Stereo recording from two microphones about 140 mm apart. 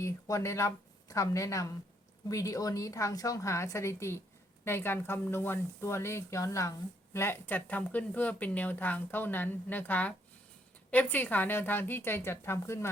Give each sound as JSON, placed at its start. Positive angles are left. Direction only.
{"t": 0.0, "sound": "a woman's voice", "side_deg": 20}